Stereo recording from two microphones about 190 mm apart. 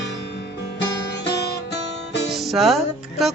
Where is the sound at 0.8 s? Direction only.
65° left (ahead or behind).